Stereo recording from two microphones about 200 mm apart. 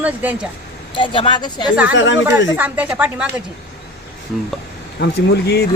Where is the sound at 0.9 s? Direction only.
25° left (ahead or behind).